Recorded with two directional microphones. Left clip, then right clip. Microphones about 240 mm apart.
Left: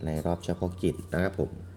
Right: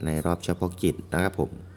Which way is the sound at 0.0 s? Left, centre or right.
Right.